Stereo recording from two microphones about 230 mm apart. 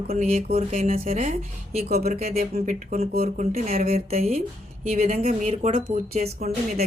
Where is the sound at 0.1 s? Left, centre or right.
Right.